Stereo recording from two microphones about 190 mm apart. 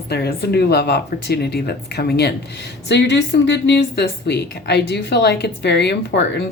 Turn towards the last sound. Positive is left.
turn(degrees=65)  # may be behind; listen again after turning